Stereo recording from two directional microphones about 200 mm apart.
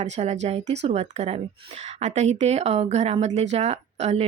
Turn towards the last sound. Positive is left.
turn(degrees=-35)  # may be behind; listen again after turning